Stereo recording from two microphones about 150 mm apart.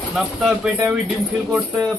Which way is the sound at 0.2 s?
5° right (ahead or behind).